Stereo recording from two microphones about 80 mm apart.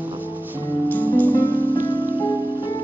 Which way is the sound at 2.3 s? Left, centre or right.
Right.